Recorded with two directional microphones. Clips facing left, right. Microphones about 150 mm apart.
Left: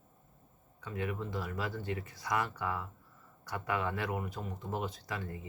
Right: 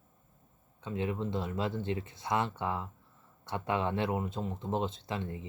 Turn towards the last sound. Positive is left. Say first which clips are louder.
# right 3 dB
turn(degrees=-25)  # may be behind; listen again after turning